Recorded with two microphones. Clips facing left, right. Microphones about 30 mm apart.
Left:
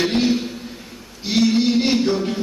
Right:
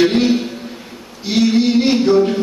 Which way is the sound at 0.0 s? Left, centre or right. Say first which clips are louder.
Right 5 dB; centre.